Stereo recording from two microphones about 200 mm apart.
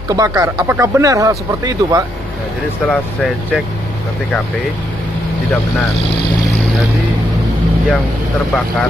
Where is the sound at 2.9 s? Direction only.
Centre (ahead or behind).